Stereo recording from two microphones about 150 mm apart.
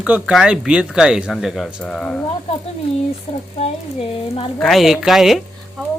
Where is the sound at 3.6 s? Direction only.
40° left (ahead or behind).